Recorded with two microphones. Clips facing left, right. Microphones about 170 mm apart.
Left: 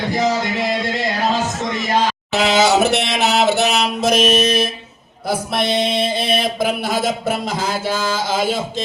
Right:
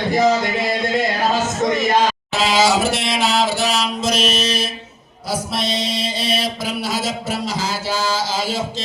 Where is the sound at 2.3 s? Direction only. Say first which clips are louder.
Left 3 dB; 65° left (ahead or behind).